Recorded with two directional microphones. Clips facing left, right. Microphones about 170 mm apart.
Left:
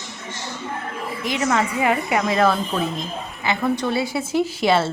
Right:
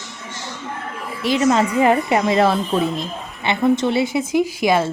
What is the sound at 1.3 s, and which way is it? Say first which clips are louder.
A woman's voice: right 5 dB; 25° right (ahead or behind).